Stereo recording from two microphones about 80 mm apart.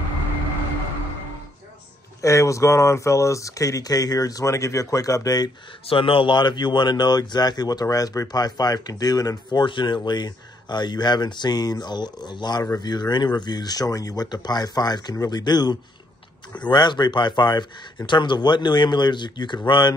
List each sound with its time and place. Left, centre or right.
2.2 s speech: left
5.9 s speech: left